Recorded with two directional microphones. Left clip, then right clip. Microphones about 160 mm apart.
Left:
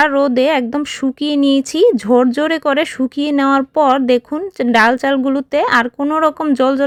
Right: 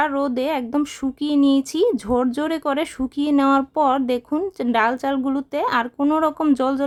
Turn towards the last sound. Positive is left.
turn(degrees=20)  # may be behind; listen again after turning